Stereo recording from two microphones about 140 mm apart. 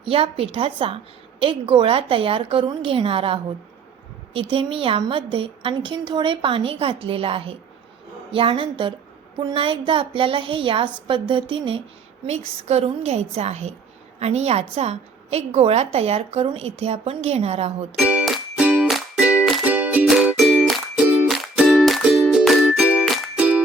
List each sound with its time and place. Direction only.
0.0 s a woman's voice: 40° right (ahead or behind)
17.9 s music: 10° right (ahead or behind)